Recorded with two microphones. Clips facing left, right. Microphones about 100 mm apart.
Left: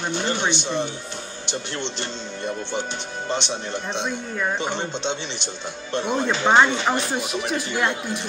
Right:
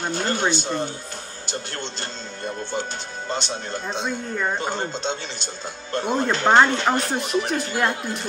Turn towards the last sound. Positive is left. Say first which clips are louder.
# right 1 dB
turn(degrees=-45)  # may be behind; listen again after turning